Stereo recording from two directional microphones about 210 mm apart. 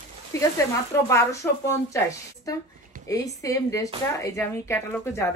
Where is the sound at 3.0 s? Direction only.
15° left (ahead or behind).